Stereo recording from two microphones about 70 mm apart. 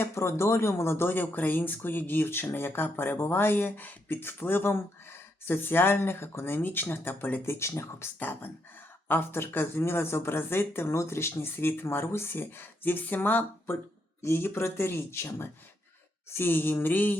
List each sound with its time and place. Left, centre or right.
0.0 s speech: left